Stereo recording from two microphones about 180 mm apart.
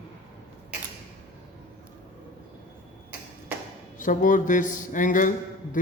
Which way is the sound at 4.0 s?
45° left (ahead or behind).